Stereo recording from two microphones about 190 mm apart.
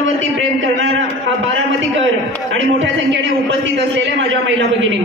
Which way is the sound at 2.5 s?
75° right (ahead or behind).